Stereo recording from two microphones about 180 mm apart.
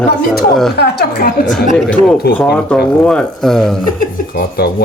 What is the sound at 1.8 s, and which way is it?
Speech, centre (ahead or behind).